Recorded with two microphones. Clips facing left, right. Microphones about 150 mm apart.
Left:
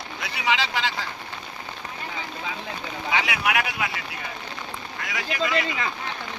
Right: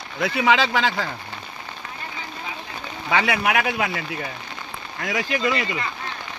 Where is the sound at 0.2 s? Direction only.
55° right (ahead or behind).